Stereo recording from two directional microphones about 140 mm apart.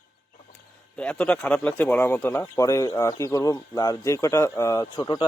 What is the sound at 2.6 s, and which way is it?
Speech, 25° left (ahead or behind).